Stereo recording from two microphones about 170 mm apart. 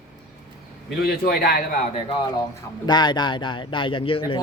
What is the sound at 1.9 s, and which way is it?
Speech, 30° left (ahead or behind).